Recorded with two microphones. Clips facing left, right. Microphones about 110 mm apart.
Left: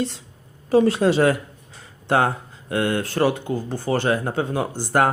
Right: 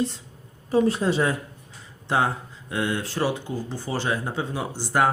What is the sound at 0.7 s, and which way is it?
Speech, 90° left.